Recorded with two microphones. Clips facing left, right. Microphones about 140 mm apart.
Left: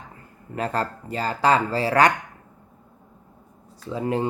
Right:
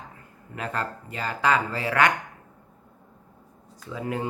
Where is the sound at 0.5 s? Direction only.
35° left (ahead or behind).